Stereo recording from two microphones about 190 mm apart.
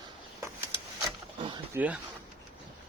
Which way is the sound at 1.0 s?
25° right (ahead or behind).